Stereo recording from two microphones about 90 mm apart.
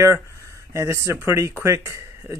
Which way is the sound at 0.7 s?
30° right (ahead or behind).